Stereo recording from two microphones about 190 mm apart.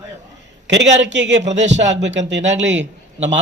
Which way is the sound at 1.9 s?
70° right (ahead or behind).